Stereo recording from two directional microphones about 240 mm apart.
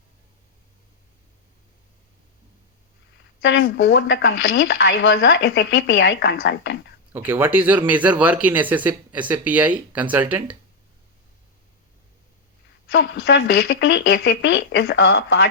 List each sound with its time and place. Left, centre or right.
3.4 s speech: left
7.1 s speech: centre
12.9 s speech: left